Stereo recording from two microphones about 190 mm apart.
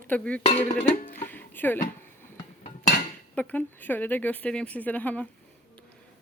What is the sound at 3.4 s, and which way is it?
Speech, 10° left (ahead or behind).